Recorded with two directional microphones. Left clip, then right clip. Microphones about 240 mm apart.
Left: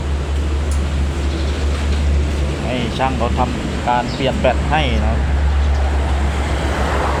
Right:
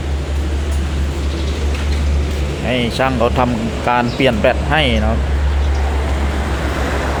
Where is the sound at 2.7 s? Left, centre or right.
Centre.